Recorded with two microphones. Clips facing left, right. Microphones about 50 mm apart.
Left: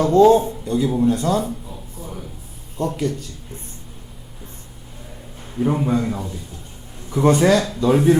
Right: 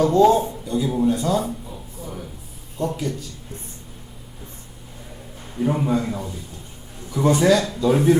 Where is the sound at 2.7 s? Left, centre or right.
Left.